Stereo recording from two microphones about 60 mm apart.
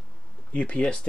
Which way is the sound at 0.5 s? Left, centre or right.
Left.